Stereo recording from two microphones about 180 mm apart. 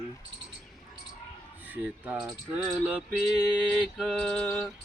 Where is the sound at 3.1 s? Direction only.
5° right (ahead or behind).